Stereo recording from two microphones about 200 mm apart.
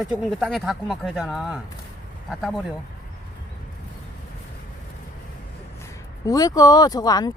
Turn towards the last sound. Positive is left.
turn(degrees=20)  # may be behind; listen again after turning